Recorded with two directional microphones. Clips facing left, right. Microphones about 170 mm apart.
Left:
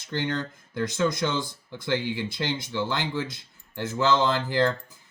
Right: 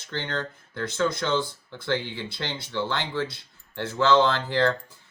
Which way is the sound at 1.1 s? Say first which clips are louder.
Right 2 dB; 15° left (ahead or behind).